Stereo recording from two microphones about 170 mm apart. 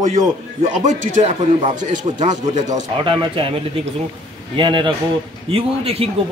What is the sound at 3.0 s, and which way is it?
Speech, 30° right (ahead or behind).